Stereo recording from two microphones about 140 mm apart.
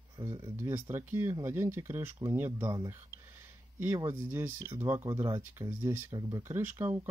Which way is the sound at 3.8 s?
20° right (ahead or behind).